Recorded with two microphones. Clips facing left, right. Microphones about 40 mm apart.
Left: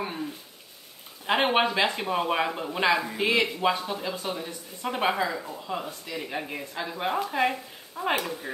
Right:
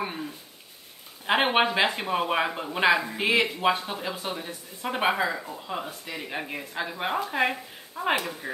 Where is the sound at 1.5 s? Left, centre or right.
Centre.